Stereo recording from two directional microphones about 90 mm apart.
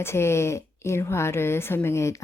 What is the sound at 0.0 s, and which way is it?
A woman's voice, 30° left (ahead or behind).